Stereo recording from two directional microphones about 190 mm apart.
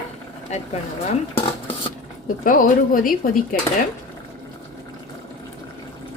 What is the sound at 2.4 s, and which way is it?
Speech, 45° left (ahead or behind).